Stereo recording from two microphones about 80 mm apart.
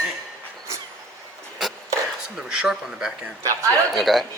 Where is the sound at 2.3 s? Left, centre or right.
Centre.